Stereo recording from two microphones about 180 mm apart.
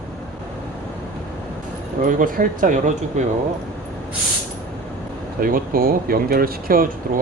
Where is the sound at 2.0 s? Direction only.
45° right (ahead or behind).